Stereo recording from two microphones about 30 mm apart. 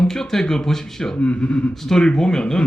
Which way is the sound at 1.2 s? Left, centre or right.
Left.